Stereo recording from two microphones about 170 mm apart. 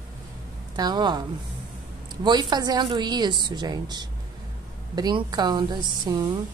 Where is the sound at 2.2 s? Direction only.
25° right (ahead or behind).